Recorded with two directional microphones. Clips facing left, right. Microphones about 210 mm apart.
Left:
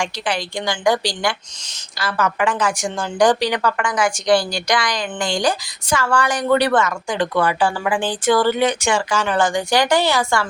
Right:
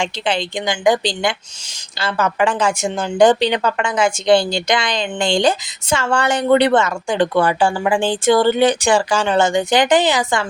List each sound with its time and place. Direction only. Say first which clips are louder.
0.0 s speech: right 3 dB; 25° right (ahead or behind)